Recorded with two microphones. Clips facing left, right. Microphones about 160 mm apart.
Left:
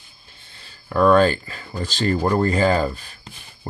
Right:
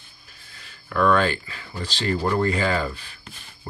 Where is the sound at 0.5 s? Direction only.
35° left (ahead or behind).